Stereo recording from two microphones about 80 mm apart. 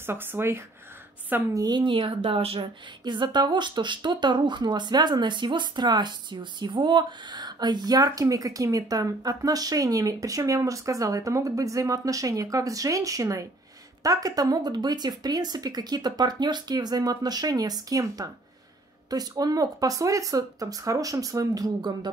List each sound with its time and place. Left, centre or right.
0.0 s speech: right
1.5 s speech: right
1.8 s speech: right